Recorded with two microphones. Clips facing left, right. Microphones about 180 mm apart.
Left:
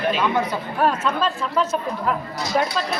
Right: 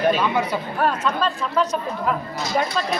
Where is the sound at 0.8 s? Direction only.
5° left (ahead or behind).